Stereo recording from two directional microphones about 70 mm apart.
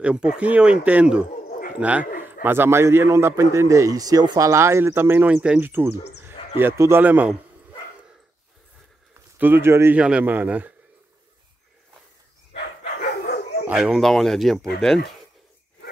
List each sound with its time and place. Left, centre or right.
0.0 s speech: centre
2.5 s a man's voice: right
5.3 s speech: centre
5.6 s speech: right
9.4 s a man's voice: right
9.9 s speech: centre
13.7 s speech: centre
13.9 s speech: centre